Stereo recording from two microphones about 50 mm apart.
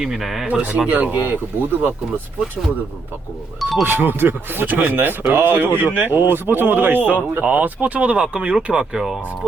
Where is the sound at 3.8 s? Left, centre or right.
Right.